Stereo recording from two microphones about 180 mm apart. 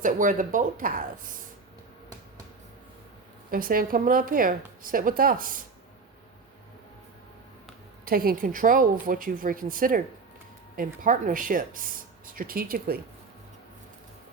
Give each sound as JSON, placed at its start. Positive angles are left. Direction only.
{"t": 0.0, "sound": "speech", "side_deg": -45}
{"t": 3.5, "sound": "speech", "side_deg": -50}
{"t": 8.0, "sound": "speech", "side_deg": -55}